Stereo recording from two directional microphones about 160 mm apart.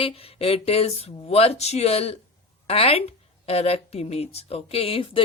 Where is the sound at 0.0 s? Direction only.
35° left (ahead or behind).